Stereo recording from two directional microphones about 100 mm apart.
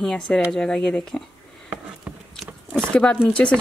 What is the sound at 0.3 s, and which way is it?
Speech, 5° left (ahead or behind).